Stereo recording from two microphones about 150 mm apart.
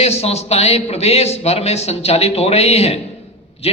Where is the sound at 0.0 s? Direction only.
45° left (ahead or behind).